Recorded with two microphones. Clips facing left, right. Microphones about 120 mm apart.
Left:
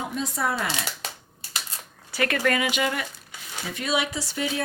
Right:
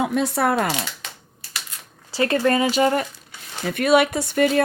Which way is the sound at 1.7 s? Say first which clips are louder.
Left 1 dB; 30° left (ahead or behind).